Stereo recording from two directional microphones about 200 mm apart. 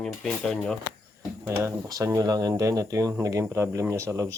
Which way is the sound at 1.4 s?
15° right (ahead or behind).